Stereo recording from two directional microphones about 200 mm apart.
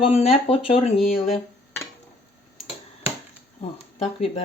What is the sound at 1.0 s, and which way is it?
Speech, centre (ahead or behind).